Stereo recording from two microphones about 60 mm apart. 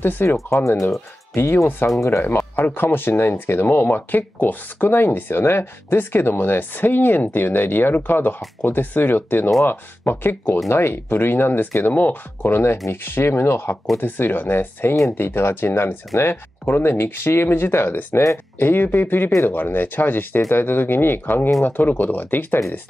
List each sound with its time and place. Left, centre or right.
0.0 s speech: left
0.7 s speech: left
1.3 s speech: left
2.0 s speech: left
2.2 s speech: left